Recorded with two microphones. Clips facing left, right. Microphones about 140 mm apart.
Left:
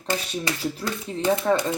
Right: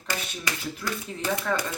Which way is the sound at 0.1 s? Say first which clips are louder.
Left 5 dB; 35° left (ahead or behind).